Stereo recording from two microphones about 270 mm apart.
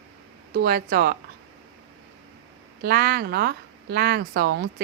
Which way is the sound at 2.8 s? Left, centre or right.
Right.